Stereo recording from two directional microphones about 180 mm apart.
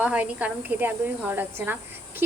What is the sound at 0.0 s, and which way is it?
Speech, 5° right (ahead or behind).